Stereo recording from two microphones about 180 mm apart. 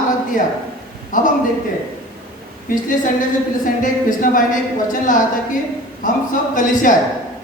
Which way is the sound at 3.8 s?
45° left (ahead or behind).